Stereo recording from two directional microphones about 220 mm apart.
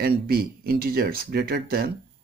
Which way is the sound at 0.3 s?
45° right (ahead or behind).